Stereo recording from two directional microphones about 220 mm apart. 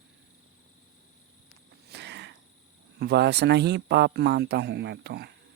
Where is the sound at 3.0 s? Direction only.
50° right (ahead or behind).